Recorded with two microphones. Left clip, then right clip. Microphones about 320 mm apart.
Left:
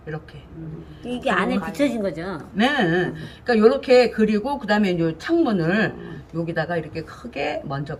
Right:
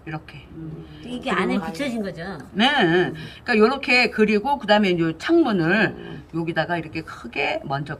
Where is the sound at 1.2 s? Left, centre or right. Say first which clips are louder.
Left 2 dB; centre.